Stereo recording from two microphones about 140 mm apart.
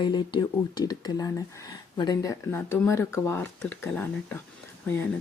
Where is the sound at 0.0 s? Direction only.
30° left (ahead or behind).